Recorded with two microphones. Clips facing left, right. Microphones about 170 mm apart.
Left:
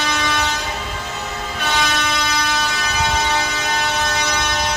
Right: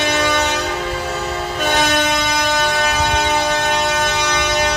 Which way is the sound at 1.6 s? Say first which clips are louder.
Right 4 dB; 50° right (ahead or behind).